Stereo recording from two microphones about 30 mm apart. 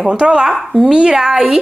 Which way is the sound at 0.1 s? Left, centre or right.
Right.